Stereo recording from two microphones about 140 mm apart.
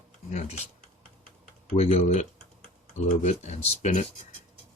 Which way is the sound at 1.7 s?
50° left (ahead or behind).